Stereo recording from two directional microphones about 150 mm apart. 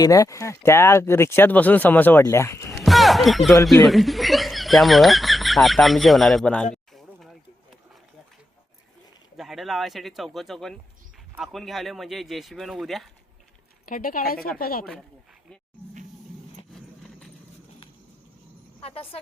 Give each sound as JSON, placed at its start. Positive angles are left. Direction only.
{"t": 0.0, "sound": "speech", "side_deg": 20}
{"t": 2.8, "sound": "a sound", "side_deg": 0}
{"t": 3.8, "sound": "speech", "side_deg": 0}
{"t": 6.9, "sound": "a sound", "side_deg": 0}
{"t": 9.4, "sound": "speech", "side_deg": 0}
{"t": 13.8, "sound": "a woman's voice", "side_deg": 70}
{"t": 16.7, "sound": "clip-clop", "side_deg": 0}
{"t": 18.8, "sound": "speech", "side_deg": 40}